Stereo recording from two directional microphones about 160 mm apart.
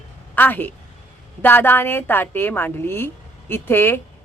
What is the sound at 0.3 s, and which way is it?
A woman's voice, 10° left (ahead or behind).